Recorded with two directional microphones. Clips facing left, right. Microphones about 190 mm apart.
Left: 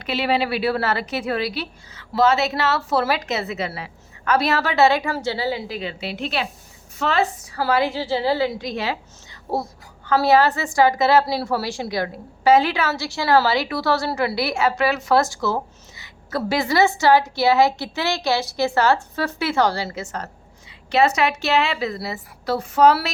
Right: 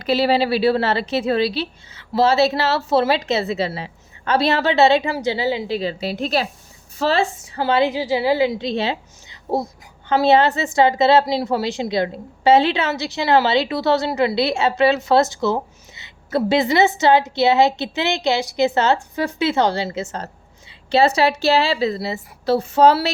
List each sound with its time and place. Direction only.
0.0 s a woman's voice: 35° right (ahead or behind)